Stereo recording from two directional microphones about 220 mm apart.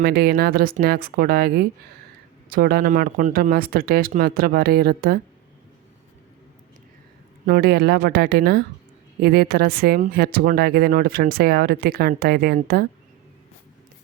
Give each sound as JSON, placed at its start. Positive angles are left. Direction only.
{"t": 0.0, "sound": "speech", "side_deg": -45}
{"t": 7.4, "sound": "speech", "side_deg": -45}